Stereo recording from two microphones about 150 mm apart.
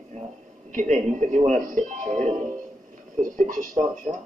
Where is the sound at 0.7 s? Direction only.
55° right (ahead or behind).